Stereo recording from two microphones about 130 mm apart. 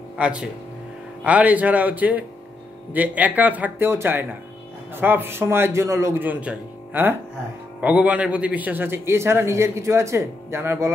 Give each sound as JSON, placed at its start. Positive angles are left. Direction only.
{"t": 0.2, "sound": "a man's voice", "side_deg": -5}